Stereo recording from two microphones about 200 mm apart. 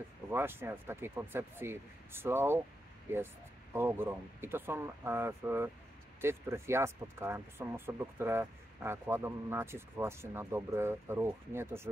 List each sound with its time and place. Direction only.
0.3 s speech: 10° right (ahead or behind)
3.7 s speech: 10° right (ahead or behind)